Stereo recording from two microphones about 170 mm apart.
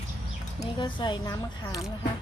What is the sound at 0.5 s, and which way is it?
A woman's voice, 25° left (ahead or behind).